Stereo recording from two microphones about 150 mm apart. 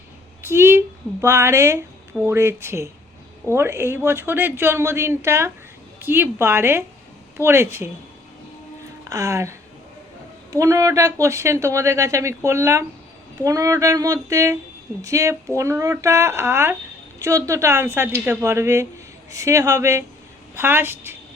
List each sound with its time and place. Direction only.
0.4 s speech: 15° right (ahead or behind)
9.0 s speech: 20° right (ahead or behind)